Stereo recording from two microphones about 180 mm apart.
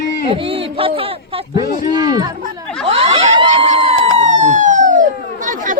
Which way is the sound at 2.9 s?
30° right (ahead or behind).